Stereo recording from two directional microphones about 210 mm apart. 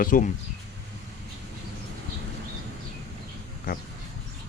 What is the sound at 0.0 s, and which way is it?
Speech, 40° left (ahead or behind).